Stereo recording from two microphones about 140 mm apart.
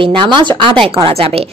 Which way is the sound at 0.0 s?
35° right (ahead or behind).